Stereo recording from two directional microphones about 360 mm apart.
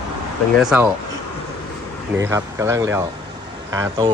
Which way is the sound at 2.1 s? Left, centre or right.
Centre.